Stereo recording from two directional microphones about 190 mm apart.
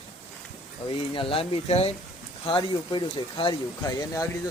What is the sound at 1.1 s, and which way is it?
Speech, 30° left (ahead or behind).